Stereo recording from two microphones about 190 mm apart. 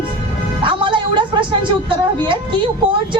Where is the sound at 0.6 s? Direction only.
25° right (ahead or behind).